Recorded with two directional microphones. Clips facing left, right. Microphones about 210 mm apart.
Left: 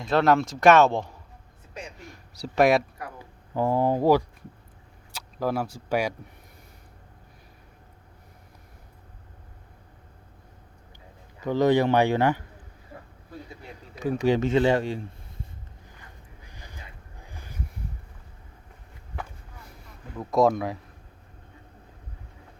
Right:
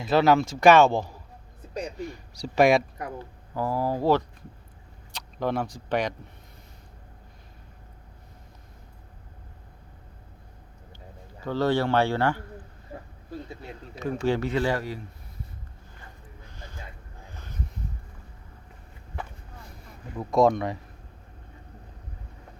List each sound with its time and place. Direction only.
0.0 s speech: 5° right (ahead or behind)
3.2 s speech: 20° left (ahead or behind)
11.4 s speech: 15° left (ahead or behind)
14.0 s speech: 15° left (ahead or behind)
16.4 s a sound: 15° left (ahead or behind)
20.3 s speech: 5° left (ahead or behind)